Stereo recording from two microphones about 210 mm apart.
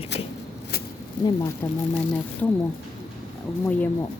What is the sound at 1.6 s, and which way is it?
Speech, 10° left (ahead or behind).